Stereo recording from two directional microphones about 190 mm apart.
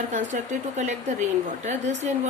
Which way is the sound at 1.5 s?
40° right (ahead or behind).